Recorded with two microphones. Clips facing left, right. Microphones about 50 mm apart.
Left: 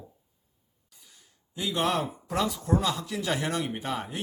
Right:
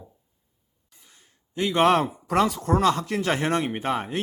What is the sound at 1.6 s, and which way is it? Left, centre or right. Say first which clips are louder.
Speech: right 8 dB; right.